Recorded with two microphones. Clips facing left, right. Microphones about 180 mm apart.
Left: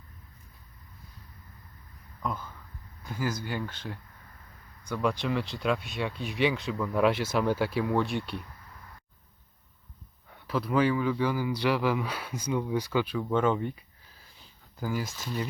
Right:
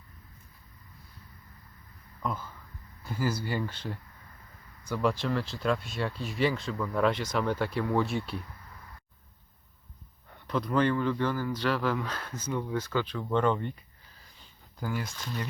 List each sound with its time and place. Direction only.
3.0 s speech: 10° right (ahead or behind)
10.4 s speech: 5° left (ahead or behind)